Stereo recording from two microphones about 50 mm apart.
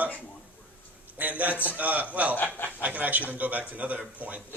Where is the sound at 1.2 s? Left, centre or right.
Right.